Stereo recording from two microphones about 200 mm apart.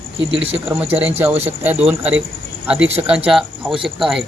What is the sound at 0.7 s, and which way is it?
Speech, 30° right (ahead or behind).